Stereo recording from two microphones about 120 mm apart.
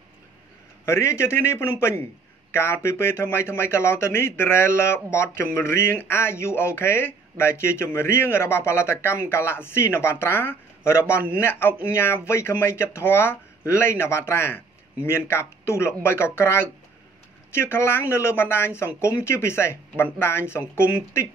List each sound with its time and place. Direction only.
0.8 s speech: 20° left (ahead or behind)